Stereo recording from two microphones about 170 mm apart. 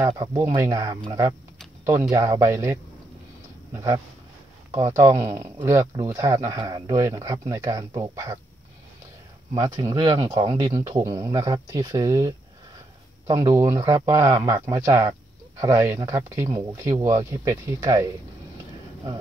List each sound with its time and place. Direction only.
0.1 s a man's voice: 20° right (ahead or behind)
9.5 s a man's voice: 20° right (ahead or behind)